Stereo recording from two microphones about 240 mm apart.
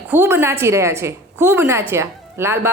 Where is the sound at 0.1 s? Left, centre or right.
Centre.